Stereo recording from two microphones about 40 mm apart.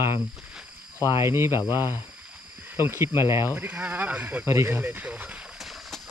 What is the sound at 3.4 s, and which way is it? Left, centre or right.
Speech, right.